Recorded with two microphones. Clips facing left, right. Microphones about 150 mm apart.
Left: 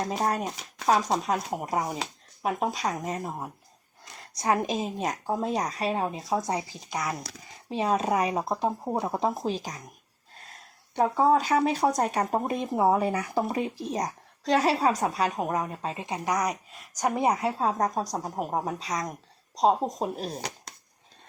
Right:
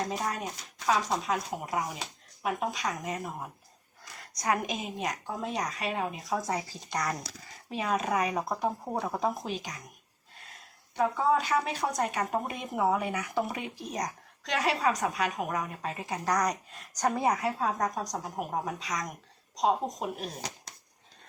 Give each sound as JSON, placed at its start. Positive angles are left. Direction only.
{"t": 0.9, "sound": "speech", "side_deg": 40}
{"t": 6.9, "sound": "speech", "side_deg": 5}
{"t": 7.7, "sound": "speech", "side_deg": 30}
{"t": 10.9, "sound": "speech", "side_deg": 35}
{"t": 16.2, "sound": "speech", "side_deg": 10}
{"t": 17.3, "sound": "speech", "side_deg": 30}